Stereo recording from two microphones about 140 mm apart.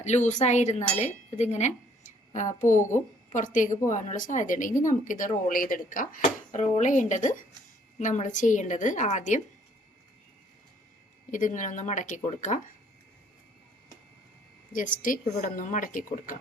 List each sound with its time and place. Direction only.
0.0 s a woman's voice: 55° left (ahead or behind); by 6.1 s 75° left (ahead or behind)
6.5 s a woman's voice: 65° left (ahead or behind)
11.3 s a woman's voice: 65° left (ahead or behind)
14.7 s a woman's voice: 70° left (ahead or behind)
15.2 s a woman's voice: 55° left (ahead or behind)